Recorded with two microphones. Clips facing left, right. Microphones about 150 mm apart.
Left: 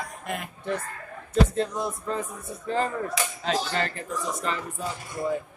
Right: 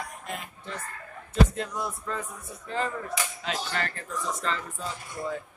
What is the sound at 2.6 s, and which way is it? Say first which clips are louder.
Speech: left 4 dB; 40° left (ahead or behind).